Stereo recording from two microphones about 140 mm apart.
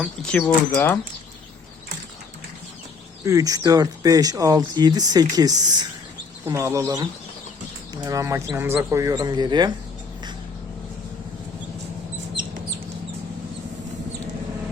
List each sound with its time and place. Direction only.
0.0 s speech: 5° left (ahead or behind)
3.2 s speech: 25° right (ahead or behind)
9.1 s speech: 30° right (ahead or behind)